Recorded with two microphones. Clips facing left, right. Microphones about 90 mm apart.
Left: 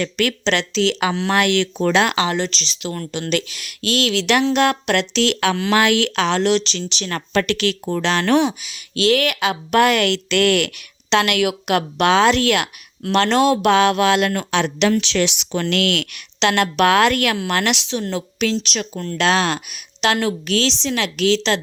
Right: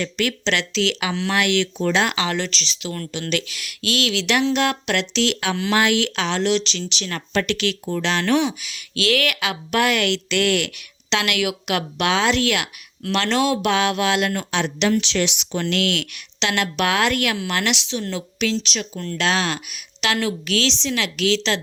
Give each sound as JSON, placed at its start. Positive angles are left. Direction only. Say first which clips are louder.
{"t": 0.0, "sound": "speech", "louder": "left 3 dB", "side_deg": 55}
{"t": 1.9, "sound": "speech", "louder": "left 4 dB", "side_deg": 70}
{"t": 2.1, "sound": "a woman's voice", "louder": "left 3 dB", "side_deg": 30}
{"t": 8.6, "sound": "speech", "louder": "left 5 dB", "side_deg": 25}
{"t": 14.3, "sound": "speech", "louder": "left 4 dB", "side_deg": 60}
{"t": 15.6, "sound": "a woman's voice", "louder": "left 2 dB", "side_deg": 60}